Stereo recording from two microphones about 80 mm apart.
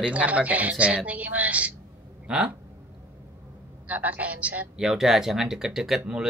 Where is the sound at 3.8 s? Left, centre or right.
Centre.